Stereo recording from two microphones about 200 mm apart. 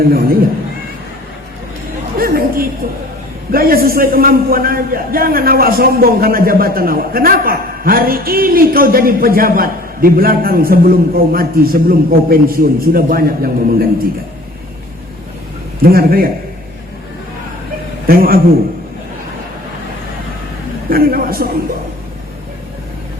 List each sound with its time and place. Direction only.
0.0 s a man's voice: 45° right (ahead or behind)
2.1 s chatter: 45° right (ahead or behind)
3.5 s a man's voice: 50° right (ahead or behind)
15.8 s a man's voice: 50° right (ahead or behind)
18.0 s a man's voice: 50° right (ahead or behind)
20.9 s a man's voice: 45° right (ahead or behind)